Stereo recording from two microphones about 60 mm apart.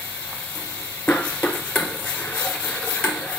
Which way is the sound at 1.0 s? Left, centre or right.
Left.